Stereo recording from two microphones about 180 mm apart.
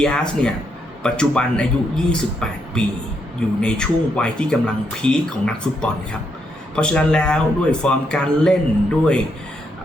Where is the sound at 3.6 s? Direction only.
5° left (ahead or behind).